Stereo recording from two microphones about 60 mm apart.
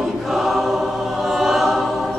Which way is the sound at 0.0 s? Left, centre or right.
Centre.